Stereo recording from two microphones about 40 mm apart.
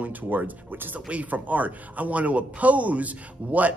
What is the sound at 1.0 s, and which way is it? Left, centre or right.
A man's voice, right.